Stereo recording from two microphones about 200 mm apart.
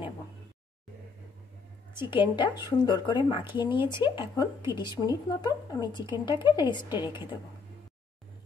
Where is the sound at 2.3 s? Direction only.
20° left (ahead or behind).